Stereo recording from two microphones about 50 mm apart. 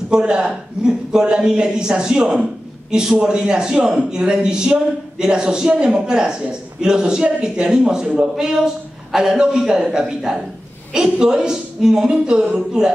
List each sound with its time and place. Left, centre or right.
0.1 s a woman's voice: centre